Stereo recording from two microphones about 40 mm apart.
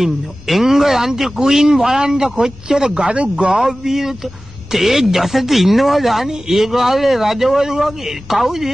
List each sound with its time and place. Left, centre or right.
0.0 s speech: centre
3.1 s speech: right
3.5 s speech: centre